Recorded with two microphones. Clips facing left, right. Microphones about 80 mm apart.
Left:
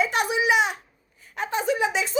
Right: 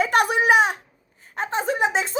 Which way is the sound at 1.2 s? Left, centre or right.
Right.